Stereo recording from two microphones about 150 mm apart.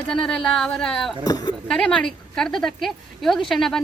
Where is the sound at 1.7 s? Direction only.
5° left (ahead or behind).